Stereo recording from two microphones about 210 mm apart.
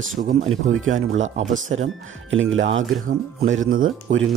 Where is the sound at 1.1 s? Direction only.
30° right (ahead or behind).